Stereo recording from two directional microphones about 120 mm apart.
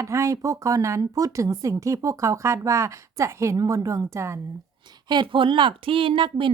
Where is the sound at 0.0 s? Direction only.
25° right (ahead or behind).